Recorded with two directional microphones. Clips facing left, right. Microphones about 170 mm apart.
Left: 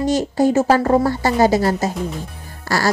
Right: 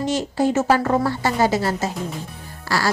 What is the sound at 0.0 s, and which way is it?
Speech, 40° left (ahead or behind).